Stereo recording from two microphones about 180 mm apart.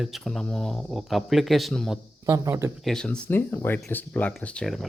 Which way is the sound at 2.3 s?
15° right (ahead or behind).